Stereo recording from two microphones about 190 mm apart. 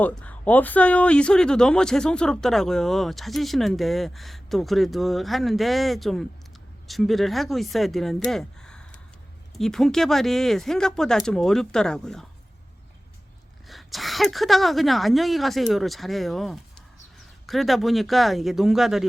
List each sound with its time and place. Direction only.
0.0 s speech: 10° left (ahead or behind)
13.7 s speech: centre (ahead or behind)